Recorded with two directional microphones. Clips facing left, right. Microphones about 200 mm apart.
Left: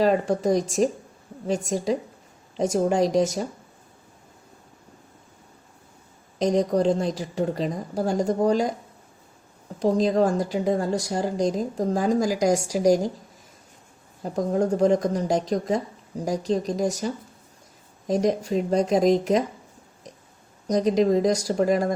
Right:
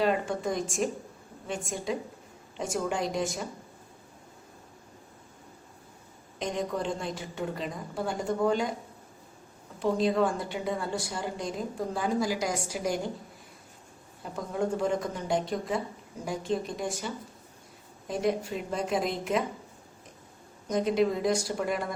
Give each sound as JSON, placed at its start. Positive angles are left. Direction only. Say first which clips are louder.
{"t": 0.0, "sound": "a woman's voice", "louder": "left 7 dB", "side_deg": 40}
{"t": 2.6, "sound": "a woman's voice", "louder": "left 9 dB", "side_deg": 40}
{"t": 6.4, "sound": "a woman's voice", "louder": "left 10 dB", "side_deg": 40}
{"t": 9.8, "sound": "a woman's voice", "louder": "left 5 dB", "side_deg": 40}
{"t": 14.2, "sound": "a woman's voice", "louder": "left 8 dB", "side_deg": 40}
{"t": 18.1, "sound": "a woman's voice", "louder": "left 7 dB", "side_deg": 40}
{"t": 20.7, "sound": "a woman's voice", "louder": "left 6 dB", "side_deg": 40}